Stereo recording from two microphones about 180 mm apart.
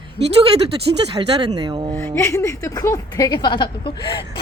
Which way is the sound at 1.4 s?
20° right (ahead or behind).